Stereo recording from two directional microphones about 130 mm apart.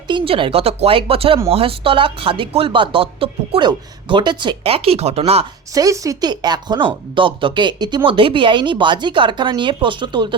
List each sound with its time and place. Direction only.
0.1 s speech: 40° right (ahead or behind)
5.7 s speech: 25° right (ahead or behind)